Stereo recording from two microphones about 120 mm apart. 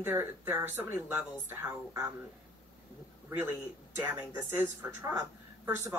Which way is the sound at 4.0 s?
20° right (ahead or behind).